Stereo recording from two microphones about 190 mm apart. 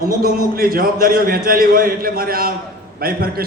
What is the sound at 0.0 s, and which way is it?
A man's voice, 50° right (ahead or behind).